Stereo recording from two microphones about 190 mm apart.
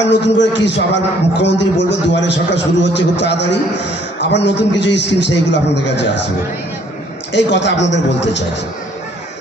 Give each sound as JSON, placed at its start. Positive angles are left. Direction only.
{"t": 0.0, "sound": "a man's voice", "side_deg": 70}
{"t": 7.3, "sound": "a man's voice", "side_deg": 70}